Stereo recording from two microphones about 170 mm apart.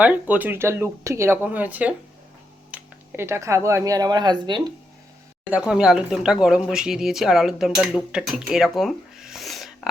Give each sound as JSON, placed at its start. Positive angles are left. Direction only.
{"t": 0.0, "sound": "speech", "side_deg": -10}
{"t": 5.5, "sound": "speech", "side_deg": -5}